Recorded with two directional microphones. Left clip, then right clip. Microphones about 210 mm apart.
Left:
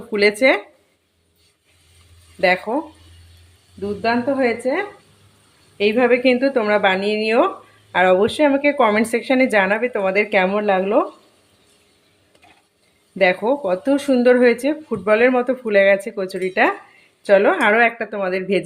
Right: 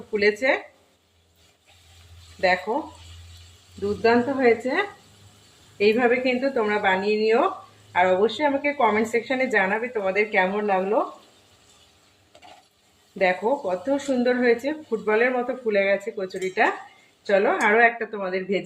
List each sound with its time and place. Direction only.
0.1 s speech: 55° left (ahead or behind)
4.0 s speech: 30° left (ahead or behind)
5.7 s a woman's voice: 30° left (ahead or behind)
6.1 s speech: 50° left (ahead or behind)
13.1 s speech: 50° left (ahead or behind)